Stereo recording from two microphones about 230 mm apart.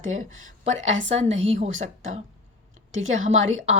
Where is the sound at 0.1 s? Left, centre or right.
Right.